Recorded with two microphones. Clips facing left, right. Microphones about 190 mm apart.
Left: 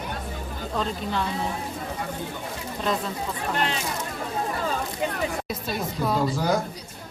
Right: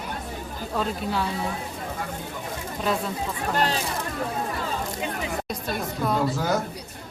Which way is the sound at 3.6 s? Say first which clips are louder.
Right 4 dB; 35° right (ahead or behind).